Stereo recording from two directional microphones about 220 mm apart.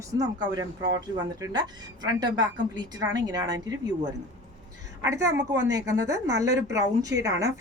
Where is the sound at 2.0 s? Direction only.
20° right (ahead or behind).